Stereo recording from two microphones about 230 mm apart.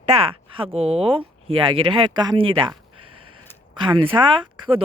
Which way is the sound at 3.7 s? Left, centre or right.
Right.